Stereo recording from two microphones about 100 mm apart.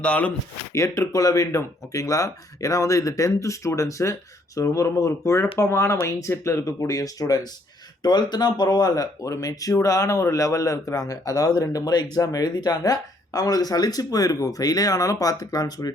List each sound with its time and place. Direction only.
0.0 s speech: 15° left (ahead or behind)
0.7 s speech: 30° left (ahead or behind)